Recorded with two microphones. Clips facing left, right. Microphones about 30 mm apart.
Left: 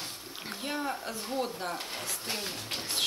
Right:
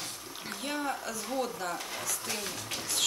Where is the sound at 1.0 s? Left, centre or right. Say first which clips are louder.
Even; left.